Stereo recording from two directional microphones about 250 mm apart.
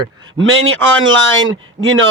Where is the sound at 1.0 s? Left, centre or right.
Right.